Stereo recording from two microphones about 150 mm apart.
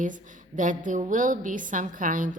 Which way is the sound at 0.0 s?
60° right (ahead or behind).